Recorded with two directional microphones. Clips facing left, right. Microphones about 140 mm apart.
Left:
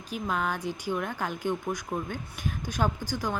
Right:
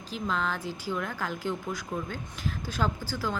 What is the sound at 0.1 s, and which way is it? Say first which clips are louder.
Speech: left 1 dB; 15° left (ahead or behind).